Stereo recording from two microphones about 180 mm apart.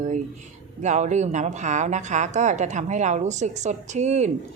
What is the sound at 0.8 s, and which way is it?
A woman's voice, 40° right (ahead or behind).